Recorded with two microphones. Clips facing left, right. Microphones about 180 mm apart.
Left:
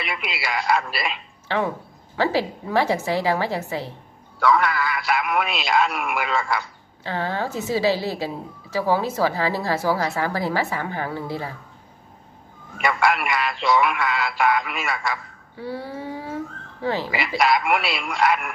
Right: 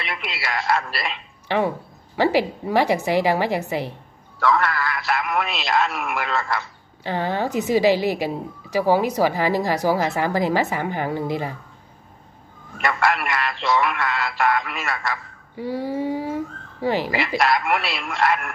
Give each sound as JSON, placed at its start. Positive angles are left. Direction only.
{"t": 0.0, "sound": "speech", "side_deg": 0}
{"t": 2.1, "sound": "a woman's voice", "side_deg": -15}
{"t": 4.4, "sound": "speech", "side_deg": 0}
{"t": 7.0, "sound": "a woman's voice", "side_deg": -15}
{"t": 12.7, "sound": "speech", "side_deg": 0}
{"t": 15.5, "sound": "a sound", "side_deg": -15}
{"t": 16.8, "sound": "a woman's voice", "side_deg": -15}
{"t": 17.4, "sound": "speech", "side_deg": 0}